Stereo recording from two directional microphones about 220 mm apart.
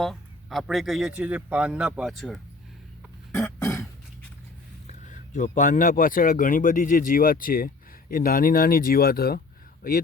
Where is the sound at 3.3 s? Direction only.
10° left (ahead or behind).